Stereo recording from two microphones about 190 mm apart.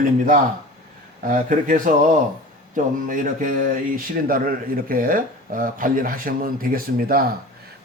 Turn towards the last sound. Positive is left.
turn(degrees=-50)  # may be behind; listen again after turning